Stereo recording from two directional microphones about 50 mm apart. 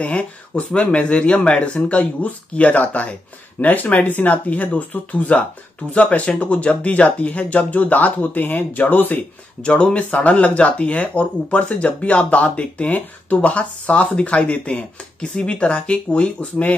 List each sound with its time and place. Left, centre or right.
0.0 s speech: left
9.6 s speech: left